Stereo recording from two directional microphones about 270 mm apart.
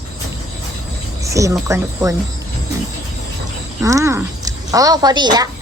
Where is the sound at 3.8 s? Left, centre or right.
Centre.